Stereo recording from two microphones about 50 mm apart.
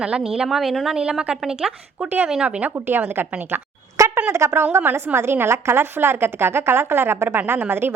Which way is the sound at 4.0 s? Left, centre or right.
Right.